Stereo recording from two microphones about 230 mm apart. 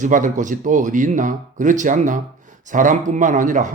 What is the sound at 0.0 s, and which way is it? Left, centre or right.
A man's voice, right.